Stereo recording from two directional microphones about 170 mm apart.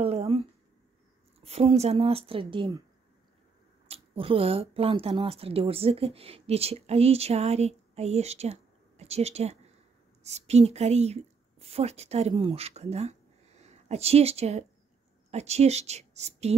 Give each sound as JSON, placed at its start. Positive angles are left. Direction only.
{"t": 0.0, "sound": "a sound", "side_deg": -40}
{"t": 1.4, "sound": "a woman's voice", "side_deg": -35}
{"t": 3.8, "sound": "a woman's voice", "side_deg": -35}